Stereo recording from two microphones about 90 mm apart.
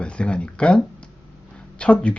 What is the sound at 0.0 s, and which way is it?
Speech, 10° left (ahead or behind).